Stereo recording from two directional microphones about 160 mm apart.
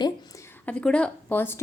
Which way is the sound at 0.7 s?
5° left (ahead or behind).